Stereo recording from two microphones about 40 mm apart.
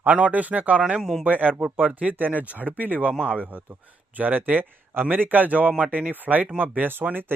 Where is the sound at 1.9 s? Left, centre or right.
Right.